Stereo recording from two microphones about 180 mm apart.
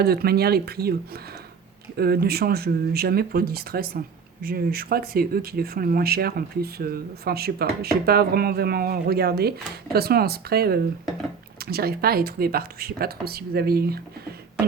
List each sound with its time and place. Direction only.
0.0 s speech: 60° right (ahead or behind)
2.0 s speech: 60° right (ahead or behind)